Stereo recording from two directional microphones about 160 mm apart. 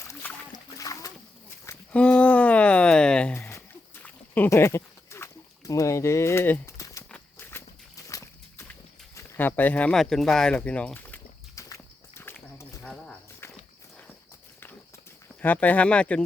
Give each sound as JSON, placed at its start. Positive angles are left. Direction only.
{"t": 0.2, "sound": "splash", "side_deg": 10}
{"t": 1.9, "sound": "a sound", "side_deg": 10}
{"t": 7.1, "sound": "horse", "side_deg": 15}
{"t": 8.0, "sound": "walk", "side_deg": 20}
{"t": 9.1, "sound": "a sound", "side_deg": 15}
{"t": 11.7, "sound": "walk", "side_deg": 15}
{"t": 13.4, "sound": "horse", "side_deg": 15}
{"t": 15.4, "sound": "speech", "side_deg": 10}